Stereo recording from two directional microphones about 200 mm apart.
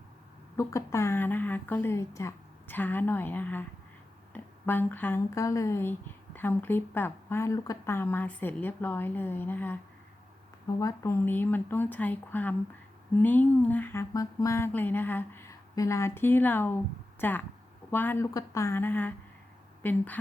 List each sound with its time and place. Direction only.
0.5 s speech: 15° left (ahead or behind)
10.8 s speech: 15° left (ahead or behind)